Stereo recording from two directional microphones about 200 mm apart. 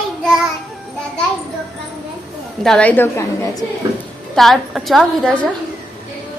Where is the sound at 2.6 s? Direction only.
5° left (ahead or behind).